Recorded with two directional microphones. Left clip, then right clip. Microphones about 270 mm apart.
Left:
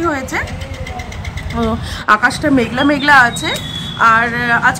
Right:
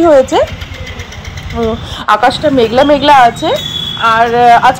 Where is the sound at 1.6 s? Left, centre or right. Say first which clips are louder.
Right 4 dB; centre.